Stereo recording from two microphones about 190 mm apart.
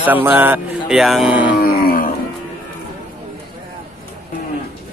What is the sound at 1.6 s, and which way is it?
Wild animals, 50° left (ahead or behind).